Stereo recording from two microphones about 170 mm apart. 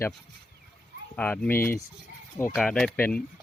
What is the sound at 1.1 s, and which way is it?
Speech, 10° left (ahead or behind).